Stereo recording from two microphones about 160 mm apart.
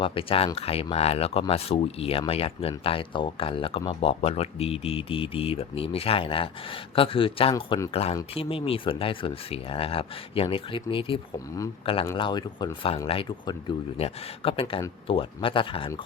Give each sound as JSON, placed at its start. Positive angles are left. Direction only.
{"t": 0.0, "sound": "speech", "side_deg": 35}